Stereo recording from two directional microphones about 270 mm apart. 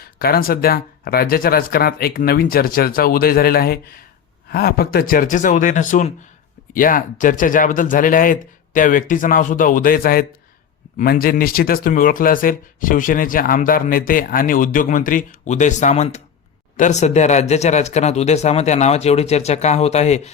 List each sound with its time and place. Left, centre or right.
0.0 s speech: left